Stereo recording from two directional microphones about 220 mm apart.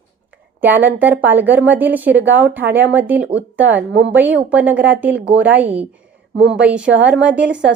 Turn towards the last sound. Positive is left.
turn(degrees=-5)  # may be behind; listen again after turning